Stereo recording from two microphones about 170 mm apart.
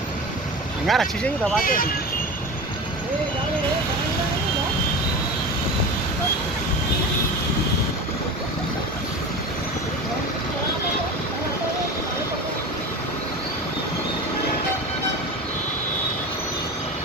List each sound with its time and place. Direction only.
0.9 s speech: centre (ahead or behind)
1.6 s speech: 55° left (ahead or behind)